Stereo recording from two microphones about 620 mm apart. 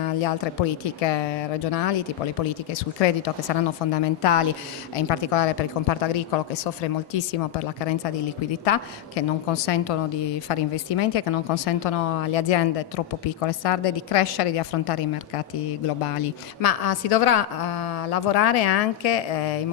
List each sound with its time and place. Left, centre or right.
0.0 s a woman's voice: left
7.8 s a woman's voice: left